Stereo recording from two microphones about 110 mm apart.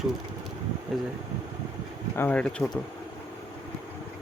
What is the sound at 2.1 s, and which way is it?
Speech, 15° left (ahead or behind).